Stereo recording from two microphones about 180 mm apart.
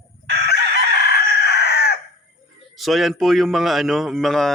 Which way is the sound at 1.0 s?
60° left (ahead or behind).